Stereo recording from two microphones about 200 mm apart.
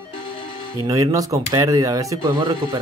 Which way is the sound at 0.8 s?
15° right (ahead or behind).